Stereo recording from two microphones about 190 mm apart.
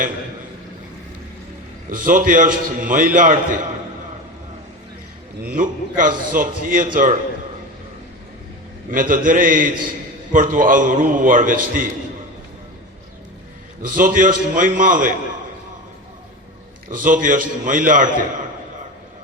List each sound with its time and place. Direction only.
1.9 s a man's voice: 45° right (ahead or behind)
5.5 s a man's voice: 45° right (ahead or behind)
8.9 s a man's voice: 45° right (ahead or behind)
13.8 s a man's voice: 45° right (ahead or behind)
17.0 s a man's voice: 45° right (ahead or behind)